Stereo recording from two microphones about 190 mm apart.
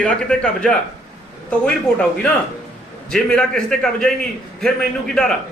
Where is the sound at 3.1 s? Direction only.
5° left (ahead or behind).